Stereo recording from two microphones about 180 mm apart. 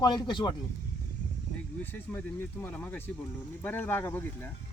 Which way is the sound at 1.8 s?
10° left (ahead or behind).